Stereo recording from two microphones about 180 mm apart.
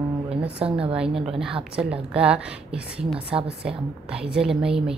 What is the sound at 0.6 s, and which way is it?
A woman's voice, 5° right (ahead or behind).